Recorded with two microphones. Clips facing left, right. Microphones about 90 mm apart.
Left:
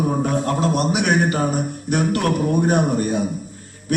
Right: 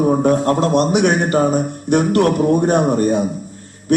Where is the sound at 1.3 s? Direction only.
35° right (ahead or behind).